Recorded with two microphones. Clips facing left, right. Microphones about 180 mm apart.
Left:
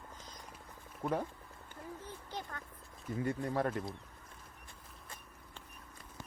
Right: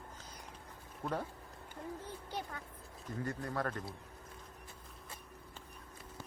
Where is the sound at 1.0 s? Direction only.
10° left (ahead or behind).